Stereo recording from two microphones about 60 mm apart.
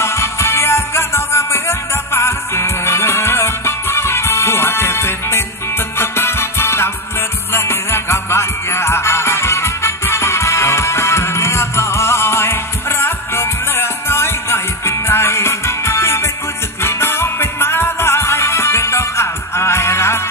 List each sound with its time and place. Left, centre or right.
0.0 s music: left